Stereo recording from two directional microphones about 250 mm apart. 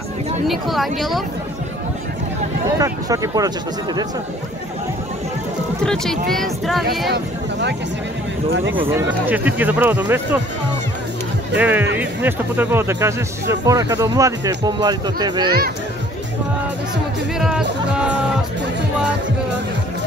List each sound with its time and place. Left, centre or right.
0.5 s speech: centre
2.8 s speech: centre
5.9 s speech: centre
8.8 s speech: centre
11.5 s speech: centre
17.4 s speech: centre